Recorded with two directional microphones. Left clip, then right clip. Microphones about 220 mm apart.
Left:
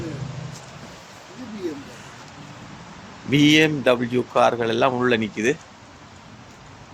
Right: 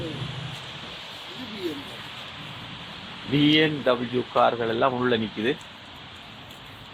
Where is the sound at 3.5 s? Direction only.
30° left (ahead or behind).